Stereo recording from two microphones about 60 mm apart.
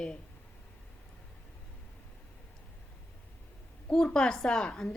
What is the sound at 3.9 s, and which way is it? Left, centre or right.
A woman's voice, centre.